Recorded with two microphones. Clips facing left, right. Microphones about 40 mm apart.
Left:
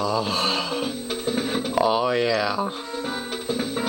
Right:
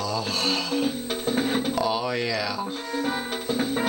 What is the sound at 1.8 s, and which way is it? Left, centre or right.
Speech, centre.